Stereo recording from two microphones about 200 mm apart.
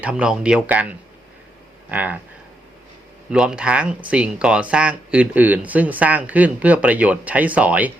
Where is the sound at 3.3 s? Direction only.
5° right (ahead or behind).